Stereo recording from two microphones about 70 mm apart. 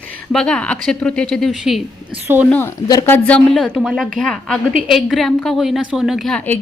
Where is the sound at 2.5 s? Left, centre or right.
Left.